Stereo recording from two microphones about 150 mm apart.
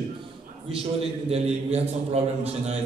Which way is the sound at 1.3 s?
45° right (ahead or behind).